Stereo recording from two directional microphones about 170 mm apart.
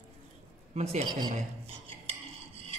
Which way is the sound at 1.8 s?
35° right (ahead or behind).